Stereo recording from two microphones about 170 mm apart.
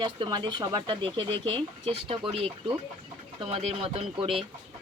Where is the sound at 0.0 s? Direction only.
25° right (ahead or behind).